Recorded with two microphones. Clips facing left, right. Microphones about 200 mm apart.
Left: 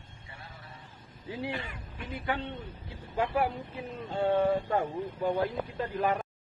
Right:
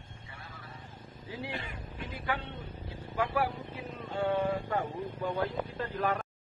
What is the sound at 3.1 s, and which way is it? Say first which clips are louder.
Speech: left 2 dB; 20° left (ahead or behind).